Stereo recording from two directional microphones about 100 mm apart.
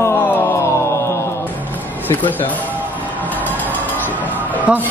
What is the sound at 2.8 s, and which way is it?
Music, 15° right (ahead or behind).